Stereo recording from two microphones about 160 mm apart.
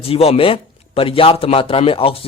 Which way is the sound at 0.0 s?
35° left (ahead or behind).